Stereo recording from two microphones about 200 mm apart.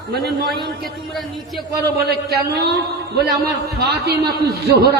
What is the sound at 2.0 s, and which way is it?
Speech, 50° right (ahead or behind).